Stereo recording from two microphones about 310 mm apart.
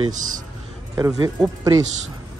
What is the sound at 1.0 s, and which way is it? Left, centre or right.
Speech, centre.